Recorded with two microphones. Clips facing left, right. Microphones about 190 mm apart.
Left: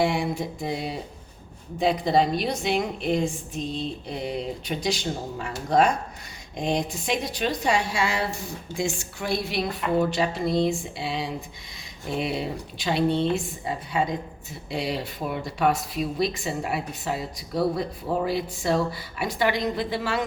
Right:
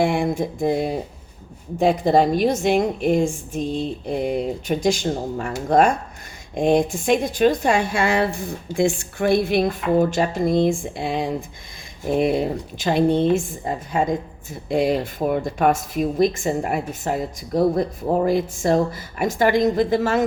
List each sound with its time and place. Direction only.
0.0 s speech: 50° right (ahead or behind)